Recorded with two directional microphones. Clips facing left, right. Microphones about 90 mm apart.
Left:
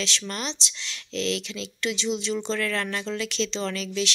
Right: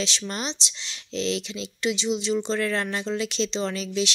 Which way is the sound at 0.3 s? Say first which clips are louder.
Right 1 dB; 20° right (ahead or behind).